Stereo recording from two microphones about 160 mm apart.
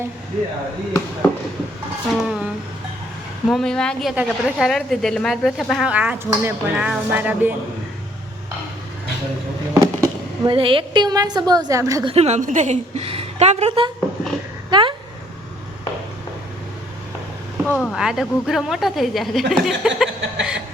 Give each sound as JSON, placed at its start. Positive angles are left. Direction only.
{"t": 2.1, "sound": "a sound", "side_deg": -5}
{"t": 3.5, "sound": "a woman's voice", "side_deg": 5}
{"t": 9.8, "sound": "a sound", "side_deg": -20}
{"t": 10.5, "sound": "a woman's voice", "side_deg": -35}
{"t": 12.0, "sound": "a woman's voice", "side_deg": -40}
{"t": 17.7, "sound": "a woman's voice", "side_deg": 5}